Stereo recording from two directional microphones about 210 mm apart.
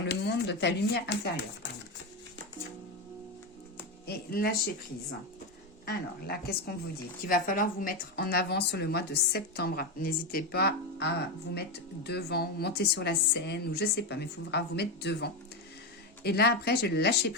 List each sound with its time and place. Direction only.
0.1 s speech: 55° left (ahead or behind)
4.0 s speech: 45° left (ahead or behind)
5.8 s speech: 50° left (ahead or behind)